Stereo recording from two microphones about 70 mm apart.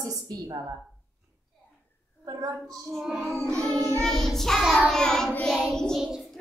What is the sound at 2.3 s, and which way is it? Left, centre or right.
Speech, right.